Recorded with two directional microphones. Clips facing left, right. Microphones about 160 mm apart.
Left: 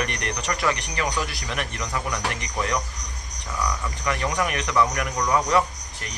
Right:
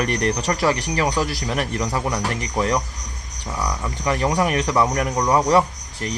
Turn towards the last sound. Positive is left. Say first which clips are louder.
# right 4 dB
turn(degrees=-35)  # may be behind; listen again after turning